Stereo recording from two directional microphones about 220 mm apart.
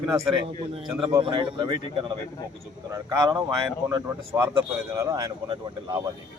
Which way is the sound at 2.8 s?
15° right (ahead or behind).